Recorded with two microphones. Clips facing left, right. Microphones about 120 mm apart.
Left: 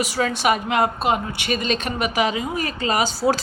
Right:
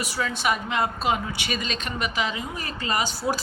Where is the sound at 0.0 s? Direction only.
75° left (ahead or behind); by 2.0 s 55° left (ahead or behind).